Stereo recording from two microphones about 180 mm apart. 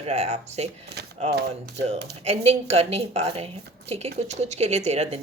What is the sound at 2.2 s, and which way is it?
Speech, 35° right (ahead or behind).